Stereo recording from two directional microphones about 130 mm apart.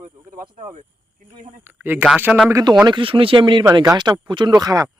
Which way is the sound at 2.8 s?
40° right (ahead or behind).